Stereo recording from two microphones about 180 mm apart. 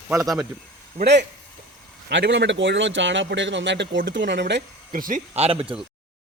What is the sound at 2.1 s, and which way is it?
A man's voice, 80° right.